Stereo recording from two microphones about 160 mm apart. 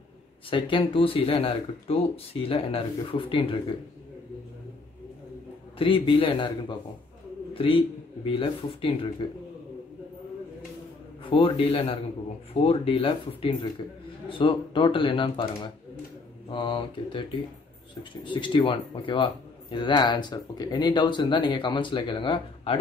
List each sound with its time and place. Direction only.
0.5 s speech: 35° left (ahead or behind)
5.8 s speech: 35° left (ahead or behind)
7.5 s speech: 35° left (ahead or behind)
11.2 s speech: 35° left (ahead or behind)
16.4 s speech: 30° left (ahead or behind)